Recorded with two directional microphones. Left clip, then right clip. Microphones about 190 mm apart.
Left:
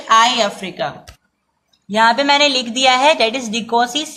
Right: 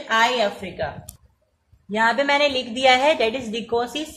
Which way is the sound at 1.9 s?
Centre (ahead or behind).